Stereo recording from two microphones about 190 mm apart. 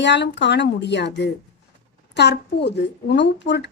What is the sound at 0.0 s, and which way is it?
A woman's voice, 65° left (ahead or behind).